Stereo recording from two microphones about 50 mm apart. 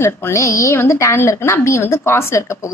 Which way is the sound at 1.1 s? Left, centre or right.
Left.